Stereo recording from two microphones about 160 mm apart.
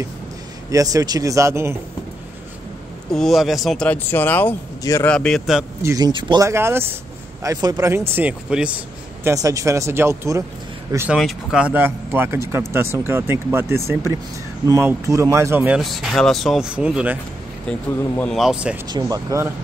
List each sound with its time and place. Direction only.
0.7 s speech: 20° right (ahead or behind)
3.1 s speech: centre (ahead or behind)
5.1 s speech: 5° left (ahead or behind)
5.8 s speech: 20° right (ahead or behind)
9.3 s speech: 20° right (ahead or behind)
11.1 s speech: centre (ahead or behind)
15.8 s speech: centre (ahead or behind)
17.6 s speech: 5° left (ahead or behind)
18.4 s speech: 5° right (ahead or behind)
18.9 s speech: 25° right (ahead or behind)